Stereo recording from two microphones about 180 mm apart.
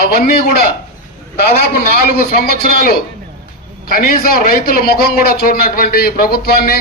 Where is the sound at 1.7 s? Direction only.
60° left (ahead or behind).